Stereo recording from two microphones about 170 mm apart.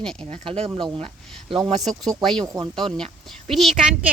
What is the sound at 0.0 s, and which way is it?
Speech, 5° left (ahead or behind).